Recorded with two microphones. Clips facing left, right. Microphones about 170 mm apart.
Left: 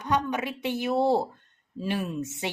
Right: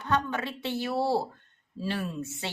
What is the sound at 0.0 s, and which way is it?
Speech, 15° left (ahead or behind).